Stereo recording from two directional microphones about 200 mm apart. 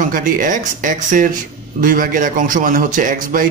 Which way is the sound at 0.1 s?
40° right (ahead or behind).